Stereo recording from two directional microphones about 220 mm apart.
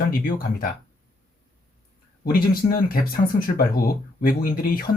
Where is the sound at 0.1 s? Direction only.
40° left (ahead or behind).